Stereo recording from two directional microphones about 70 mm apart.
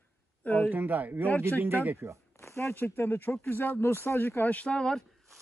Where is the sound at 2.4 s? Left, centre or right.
Left.